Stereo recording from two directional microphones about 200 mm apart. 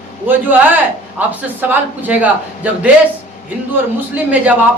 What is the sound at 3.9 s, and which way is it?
Speech, 10° right (ahead or behind).